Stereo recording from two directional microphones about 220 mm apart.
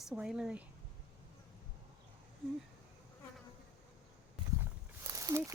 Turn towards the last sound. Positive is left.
turn(degrees=-15)  # may be behind; listen again after turning